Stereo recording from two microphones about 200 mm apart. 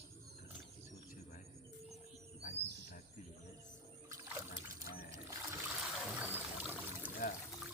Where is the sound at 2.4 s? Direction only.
40° left (ahead or behind).